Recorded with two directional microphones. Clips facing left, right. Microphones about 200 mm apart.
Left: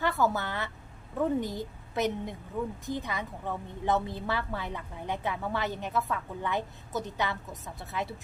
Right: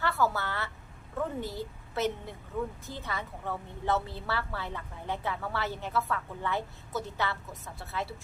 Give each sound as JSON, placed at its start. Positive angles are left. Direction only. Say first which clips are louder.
{"t": 0.0, "sound": "a woman's voice", "louder": "left 2 dB", "side_deg": 15}